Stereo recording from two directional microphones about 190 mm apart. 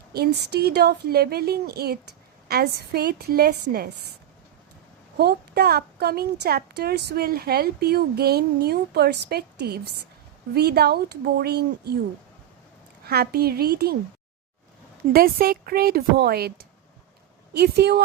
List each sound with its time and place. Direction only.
0.1 s a woman's voice: 55° right (ahead or behind)
5.1 s a woman's voice: 55° right (ahead or behind)
13.1 s a woman's voice: 55° right (ahead or behind)
15.1 s a woman's voice: 50° right (ahead or behind)